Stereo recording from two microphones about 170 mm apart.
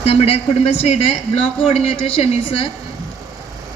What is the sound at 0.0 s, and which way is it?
A woman's voice, 35° left (ahead or behind).